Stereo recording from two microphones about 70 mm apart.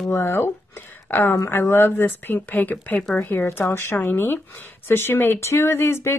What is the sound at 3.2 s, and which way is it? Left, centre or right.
Speech, left.